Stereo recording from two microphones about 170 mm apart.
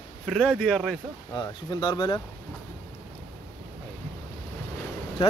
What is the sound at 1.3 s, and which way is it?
Speech, 25° left (ahead or behind).